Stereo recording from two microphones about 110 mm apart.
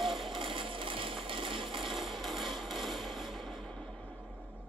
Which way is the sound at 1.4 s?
50° right (ahead or behind).